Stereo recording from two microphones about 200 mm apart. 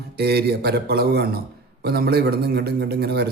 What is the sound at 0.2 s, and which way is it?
A man's voice, 55° right (ahead or behind).